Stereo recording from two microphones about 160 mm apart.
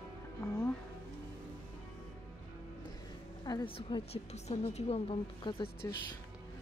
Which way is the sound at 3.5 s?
30° left (ahead or behind).